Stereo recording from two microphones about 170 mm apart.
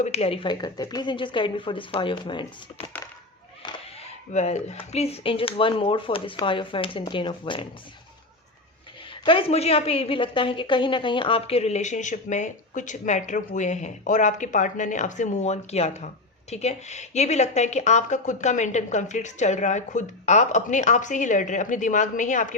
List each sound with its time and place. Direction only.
0.0 s a woman's voice: 35° left (ahead or behind)
3.6 s a sound: 25° left (ahead or behind)
4.3 s a woman's voice: 40° left (ahead or behind)
9.2 s a woman's voice: 30° left (ahead or behind); by 22.5 s 50° left (ahead or behind)